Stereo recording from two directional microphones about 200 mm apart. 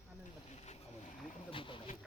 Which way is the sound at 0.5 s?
35° left (ahead or behind).